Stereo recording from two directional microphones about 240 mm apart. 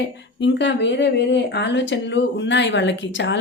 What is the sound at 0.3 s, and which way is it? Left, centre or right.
Speech, left.